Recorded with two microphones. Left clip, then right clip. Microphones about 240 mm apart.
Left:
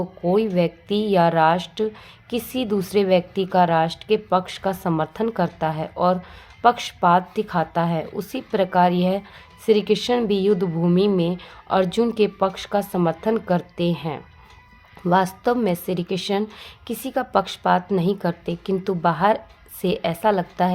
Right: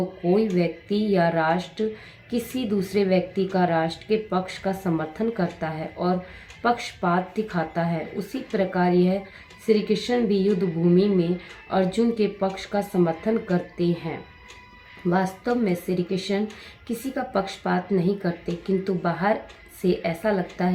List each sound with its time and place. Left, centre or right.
0.3 s a woman's voice: left
15.1 s a woman's voice: left